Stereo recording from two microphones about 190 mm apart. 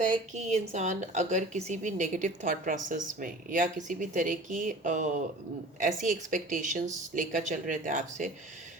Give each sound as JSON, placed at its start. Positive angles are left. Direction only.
{"t": 0.0, "sound": "a woman's voice", "side_deg": -40}